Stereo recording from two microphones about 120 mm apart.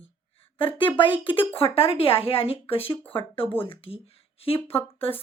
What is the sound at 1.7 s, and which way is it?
Speech, 50° left (ahead or behind).